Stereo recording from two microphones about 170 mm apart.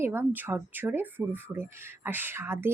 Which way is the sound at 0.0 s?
15° right (ahead or behind).